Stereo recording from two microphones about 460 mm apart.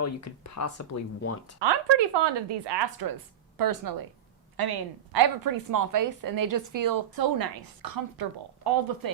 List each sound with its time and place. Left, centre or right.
0.0 s speech: left
1.5 s a woman's voice: right